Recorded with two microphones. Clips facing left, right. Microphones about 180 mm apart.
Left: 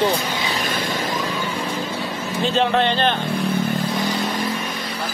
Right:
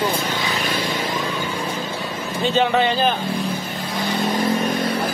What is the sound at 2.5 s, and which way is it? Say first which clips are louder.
Speech: right 1 dB; centre (ahead or behind).